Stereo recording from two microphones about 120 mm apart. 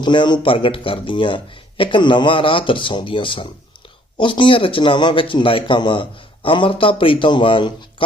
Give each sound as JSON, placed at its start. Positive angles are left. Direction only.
{"t": 0.0, "sound": "a man's voice", "side_deg": 40}